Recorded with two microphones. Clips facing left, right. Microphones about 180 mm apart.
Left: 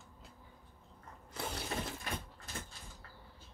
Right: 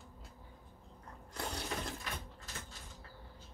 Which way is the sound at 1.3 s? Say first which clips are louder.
Left 1 dB; centre (ahead or behind).